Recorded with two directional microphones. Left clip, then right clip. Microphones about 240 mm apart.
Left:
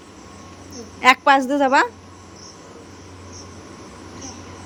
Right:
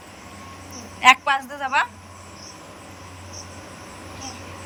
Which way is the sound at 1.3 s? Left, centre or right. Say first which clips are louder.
Left 8 dB; left.